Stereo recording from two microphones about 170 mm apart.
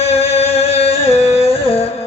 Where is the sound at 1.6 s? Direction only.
35° left (ahead or behind).